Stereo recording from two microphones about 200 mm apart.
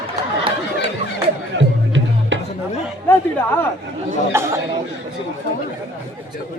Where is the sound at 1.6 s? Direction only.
65° right (ahead or behind).